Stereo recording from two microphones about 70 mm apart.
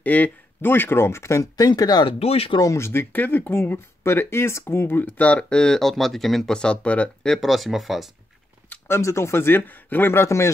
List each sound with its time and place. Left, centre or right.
0.0 s speech: left
1.4 s speech: left
2.7 s speech: left; by 7.1 s centre
7.2 s speech: centre
8.6 s speech: left
10.2 s speech: left